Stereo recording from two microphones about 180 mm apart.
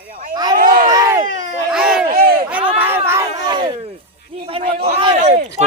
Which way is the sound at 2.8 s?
10° right (ahead or behind).